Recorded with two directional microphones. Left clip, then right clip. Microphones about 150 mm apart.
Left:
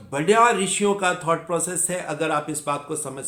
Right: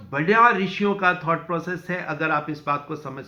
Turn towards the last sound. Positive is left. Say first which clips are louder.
# even
turn(degrees=40)  # may be behind; listen again after turning